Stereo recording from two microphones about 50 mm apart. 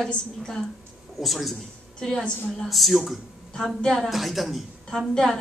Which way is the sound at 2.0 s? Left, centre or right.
Centre.